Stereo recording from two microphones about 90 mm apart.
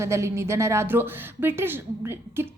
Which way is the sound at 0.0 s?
30° right (ahead or behind).